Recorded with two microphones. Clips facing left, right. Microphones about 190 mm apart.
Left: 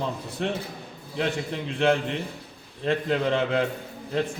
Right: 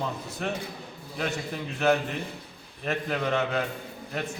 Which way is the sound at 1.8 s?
30° left (ahead or behind).